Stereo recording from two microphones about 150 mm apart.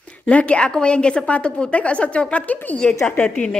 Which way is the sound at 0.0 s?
10° left (ahead or behind).